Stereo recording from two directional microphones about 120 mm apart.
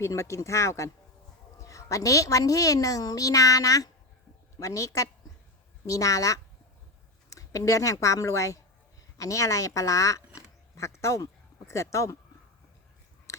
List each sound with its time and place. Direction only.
0.0 s a woman's voice: 25° left (ahead or behind)
7.3 s a sound: 25° left (ahead or behind)
8.0 s a woman's voice: 25° left (ahead or behind)